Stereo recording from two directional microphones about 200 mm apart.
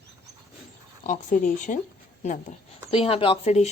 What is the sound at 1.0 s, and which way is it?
Speech, 40° left (ahead or behind).